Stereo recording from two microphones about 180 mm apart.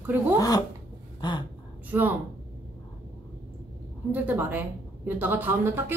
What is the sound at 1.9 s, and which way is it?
Speech, 10° right (ahead or behind).